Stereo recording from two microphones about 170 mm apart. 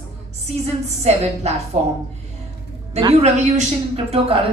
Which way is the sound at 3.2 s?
40° right (ahead or behind).